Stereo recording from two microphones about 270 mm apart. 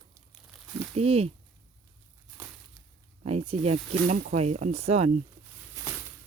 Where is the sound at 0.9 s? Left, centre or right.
Right.